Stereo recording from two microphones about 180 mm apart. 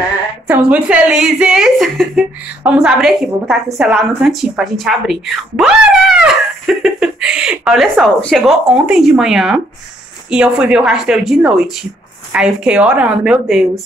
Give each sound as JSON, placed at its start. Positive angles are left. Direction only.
{"t": 0.5, "sound": "a woman's voice", "side_deg": -5}